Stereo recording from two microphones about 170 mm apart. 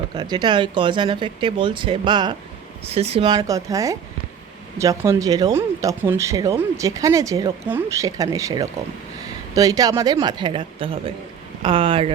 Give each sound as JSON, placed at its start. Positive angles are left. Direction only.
{"t": 0.1, "sound": "speech", "side_deg": -25}
{"t": 2.9, "sound": "speech", "side_deg": -40}